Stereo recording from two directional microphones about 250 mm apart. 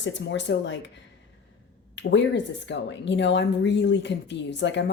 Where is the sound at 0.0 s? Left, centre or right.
Left.